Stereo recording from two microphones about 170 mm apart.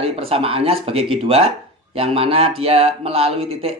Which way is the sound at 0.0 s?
35° right (ahead or behind).